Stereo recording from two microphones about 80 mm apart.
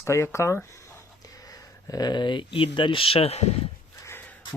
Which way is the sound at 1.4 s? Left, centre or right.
Left.